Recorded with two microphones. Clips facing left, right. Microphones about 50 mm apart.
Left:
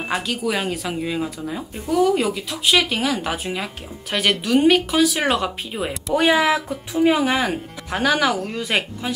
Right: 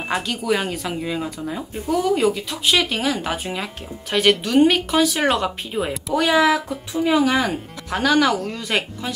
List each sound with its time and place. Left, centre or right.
0.0 s speech: centre
6.1 s speech: centre